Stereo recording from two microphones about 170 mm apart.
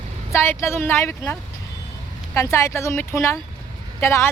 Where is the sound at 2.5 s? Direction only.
15° left (ahead or behind).